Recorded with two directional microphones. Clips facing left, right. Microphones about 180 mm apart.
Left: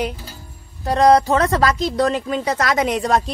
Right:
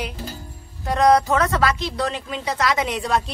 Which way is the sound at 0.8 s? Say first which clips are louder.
Left 3 dB; 35° left (ahead or behind).